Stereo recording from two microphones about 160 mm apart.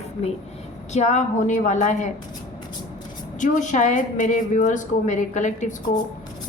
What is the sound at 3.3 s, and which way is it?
A woman's voice, 55° left (ahead or behind).